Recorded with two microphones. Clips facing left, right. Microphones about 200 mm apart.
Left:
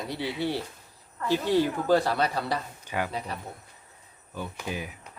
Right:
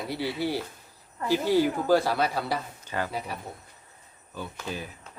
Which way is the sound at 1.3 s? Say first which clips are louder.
Right 1 dB; 5° right (ahead or behind).